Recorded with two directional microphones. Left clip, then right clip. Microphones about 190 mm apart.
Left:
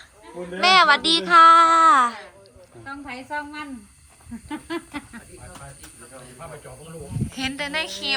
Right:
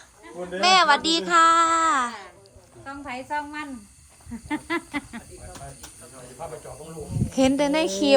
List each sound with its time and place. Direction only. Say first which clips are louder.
0.6 s a woman's voice: left 2 dB; 10° right (ahead or behind)
7.3 s a woman's voice: right 6 dB; 45° right (ahead or behind)